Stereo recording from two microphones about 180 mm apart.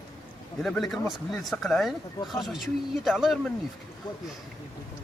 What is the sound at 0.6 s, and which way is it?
Speech, centre (ahead or behind).